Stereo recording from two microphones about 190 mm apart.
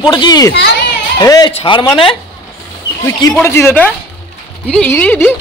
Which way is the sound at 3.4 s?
15° left (ahead or behind).